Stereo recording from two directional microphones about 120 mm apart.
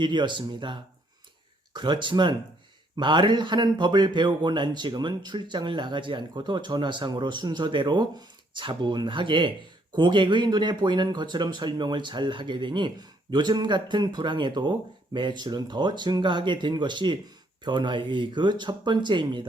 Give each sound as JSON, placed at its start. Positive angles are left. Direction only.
{"t": 0.0, "sound": "speech", "side_deg": -40}